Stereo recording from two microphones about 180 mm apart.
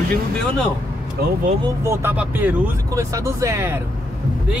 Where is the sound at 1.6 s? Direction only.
15° right (ahead or behind).